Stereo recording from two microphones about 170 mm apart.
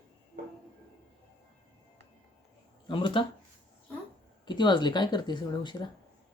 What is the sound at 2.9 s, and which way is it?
Speech, 30° left (ahead or behind).